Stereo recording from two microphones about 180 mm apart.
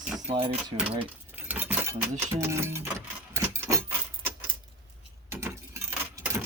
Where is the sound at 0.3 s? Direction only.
30° right (ahead or behind).